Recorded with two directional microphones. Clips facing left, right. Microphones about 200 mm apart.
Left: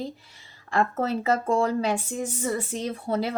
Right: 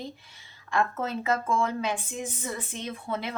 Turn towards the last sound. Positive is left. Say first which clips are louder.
# left 6 dB
turn(degrees=35)  # may be behind; listen again after turning